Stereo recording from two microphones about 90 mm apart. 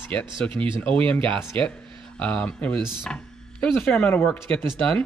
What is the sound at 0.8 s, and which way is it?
Speech, 20° left (ahead or behind).